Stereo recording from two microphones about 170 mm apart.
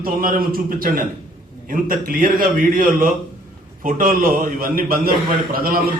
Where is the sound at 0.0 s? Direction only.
55° right (ahead or behind).